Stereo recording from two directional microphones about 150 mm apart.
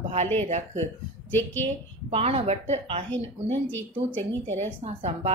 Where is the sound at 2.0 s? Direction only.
40° right (ahead or behind).